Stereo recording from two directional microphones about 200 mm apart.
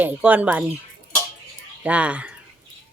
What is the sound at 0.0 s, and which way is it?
Speech, 10° right (ahead or behind).